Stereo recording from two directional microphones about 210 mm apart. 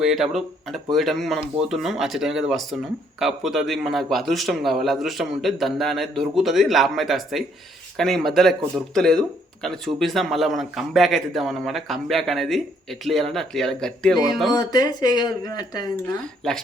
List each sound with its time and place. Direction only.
0.0 s a man's voice: centre (ahead or behind)
14.5 s speech: 15° left (ahead or behind)
16.4 s a man's voice: centre (ahead or behind)